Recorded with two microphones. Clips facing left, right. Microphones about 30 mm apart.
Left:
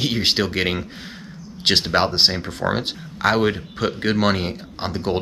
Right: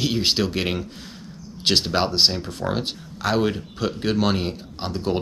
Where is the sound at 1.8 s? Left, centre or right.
Centre.